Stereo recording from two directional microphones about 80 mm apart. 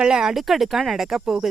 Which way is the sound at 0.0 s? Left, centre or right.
Centre.